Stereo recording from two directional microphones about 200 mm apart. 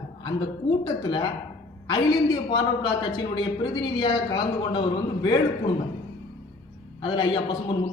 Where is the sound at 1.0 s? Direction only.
25° left (ahead or behind).